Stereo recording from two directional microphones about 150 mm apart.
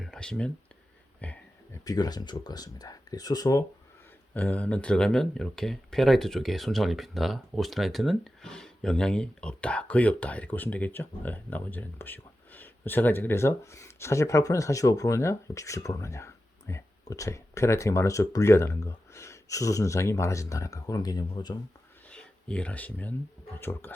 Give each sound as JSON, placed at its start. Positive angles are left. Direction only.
{"t": 0.0, "sound": "a sound", "side_deg": 5}
{"t": 1.8, "sound": "speech", "side_deg": 25}
{"t": 4.4, "sound": "speech", "side_deg": 10}
{"t": 22.1, "sound": "speech", "side_deg": 5}